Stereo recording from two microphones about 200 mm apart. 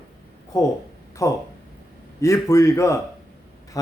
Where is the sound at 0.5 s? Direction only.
15° left (ahead or behind).